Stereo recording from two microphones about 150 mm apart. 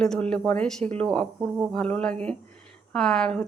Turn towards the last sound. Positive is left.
turn(degrees=5)  # may be behind; listen again after turning